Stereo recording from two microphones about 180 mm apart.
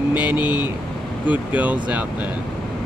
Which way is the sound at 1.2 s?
10° right (ahead or behind).